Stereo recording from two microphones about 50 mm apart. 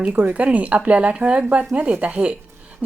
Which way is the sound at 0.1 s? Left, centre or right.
Right.